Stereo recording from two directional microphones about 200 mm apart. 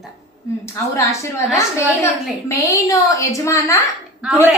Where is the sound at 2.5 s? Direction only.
15° left (ahead or behind).